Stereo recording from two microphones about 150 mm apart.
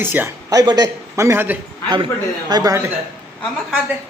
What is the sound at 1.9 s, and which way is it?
Speech, 30° right (ahead or behind).